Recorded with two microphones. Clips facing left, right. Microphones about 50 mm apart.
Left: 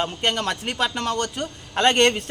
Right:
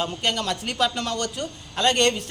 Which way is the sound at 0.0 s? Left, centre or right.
Left.